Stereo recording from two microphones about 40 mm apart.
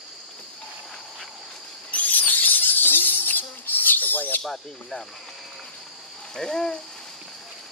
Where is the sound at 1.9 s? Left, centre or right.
Left.